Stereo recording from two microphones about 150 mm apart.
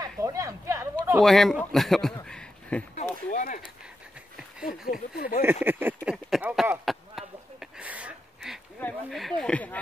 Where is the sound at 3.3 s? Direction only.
55° left (ahead or behind).